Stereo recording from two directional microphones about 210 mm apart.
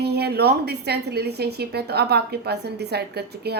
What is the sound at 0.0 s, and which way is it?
A woman's voice, 50° right (ahead or behind).